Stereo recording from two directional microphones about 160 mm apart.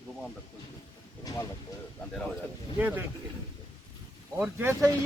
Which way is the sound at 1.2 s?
20° left (ahead or behind).